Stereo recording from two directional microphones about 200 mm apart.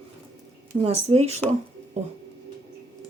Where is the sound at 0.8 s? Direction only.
30° right (ahead or behind).